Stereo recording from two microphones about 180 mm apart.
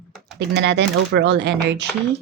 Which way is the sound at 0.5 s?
70° right (ahead or behind).